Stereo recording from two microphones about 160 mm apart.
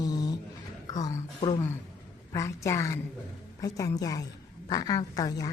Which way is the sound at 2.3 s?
20° left (ahead or behind).